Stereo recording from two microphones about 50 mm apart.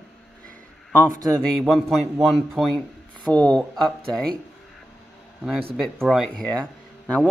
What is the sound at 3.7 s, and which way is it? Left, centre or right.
Speech, centre.